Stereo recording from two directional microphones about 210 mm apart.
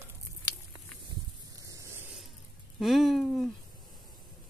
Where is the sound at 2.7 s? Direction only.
Centre (ahead or behind).